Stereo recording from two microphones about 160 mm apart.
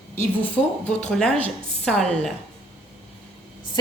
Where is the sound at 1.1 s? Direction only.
5° left (ahead or behind).